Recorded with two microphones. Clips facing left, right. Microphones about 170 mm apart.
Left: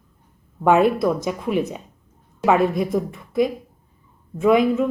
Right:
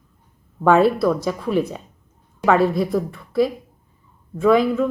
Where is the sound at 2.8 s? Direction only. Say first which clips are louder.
Right 1 dB; 15° left (ahead or behind).